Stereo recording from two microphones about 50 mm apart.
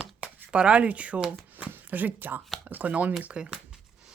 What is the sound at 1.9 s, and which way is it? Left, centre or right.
Speech, right.